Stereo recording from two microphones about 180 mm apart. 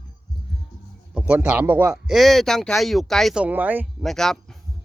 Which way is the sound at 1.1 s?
5° right (ahead or behind).